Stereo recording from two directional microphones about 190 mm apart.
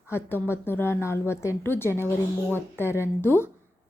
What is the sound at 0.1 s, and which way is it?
A woman's voice, 10° left (ahead or behind).